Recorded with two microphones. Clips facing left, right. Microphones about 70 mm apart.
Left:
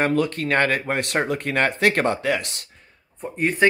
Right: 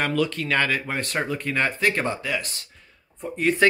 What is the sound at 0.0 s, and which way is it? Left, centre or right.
Speech, left.